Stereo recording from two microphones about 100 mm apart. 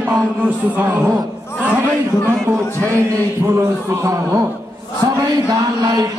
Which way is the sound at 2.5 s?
30° right (ahead or behind).